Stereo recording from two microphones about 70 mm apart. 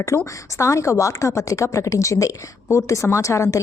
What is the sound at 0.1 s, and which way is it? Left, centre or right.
A woman's voice, left.